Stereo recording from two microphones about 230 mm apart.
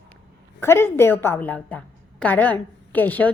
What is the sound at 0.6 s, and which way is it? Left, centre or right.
A woman's voice, centre.